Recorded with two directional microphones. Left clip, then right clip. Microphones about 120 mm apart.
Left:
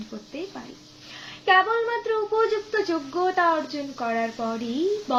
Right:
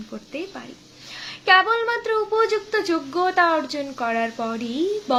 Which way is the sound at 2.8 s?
30° right (ahead or behind).